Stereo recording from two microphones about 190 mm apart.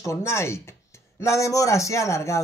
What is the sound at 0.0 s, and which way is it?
A man's voice, 15° left (ahead or behind).